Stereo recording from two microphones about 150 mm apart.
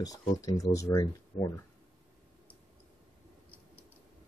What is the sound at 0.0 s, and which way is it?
Speech, 25° left (ahead or behind).